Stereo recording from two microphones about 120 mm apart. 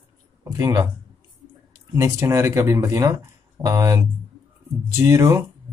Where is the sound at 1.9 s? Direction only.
25° right (ahead or behind).